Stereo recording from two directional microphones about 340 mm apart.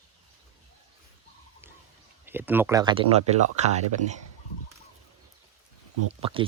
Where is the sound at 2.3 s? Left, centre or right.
Centre.